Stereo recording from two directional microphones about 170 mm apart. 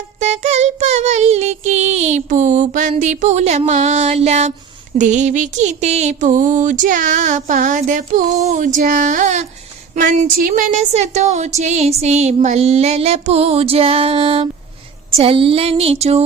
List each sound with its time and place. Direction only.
0.2 s speech: 40° right (ahead or behind)
4.9 s a sound: 45° right (ahead or behind)
9.9 s speech: 50° right (ahead or behind)